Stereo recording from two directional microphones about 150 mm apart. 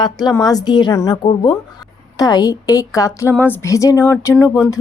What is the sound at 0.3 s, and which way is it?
A woman's voice, 25° left (ahead or behind).